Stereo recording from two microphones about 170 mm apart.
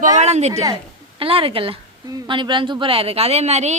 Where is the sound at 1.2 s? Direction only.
35° right (ahead or behind).